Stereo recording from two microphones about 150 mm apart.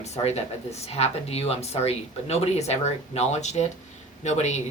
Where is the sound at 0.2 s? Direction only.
45° left (ahead or behind).